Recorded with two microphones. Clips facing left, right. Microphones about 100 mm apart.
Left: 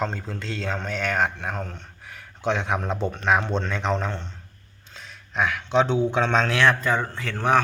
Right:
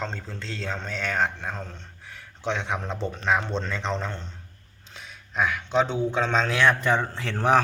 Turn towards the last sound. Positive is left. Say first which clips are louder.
# even
turn(degrees=-30)  # may be behind; listen again after turning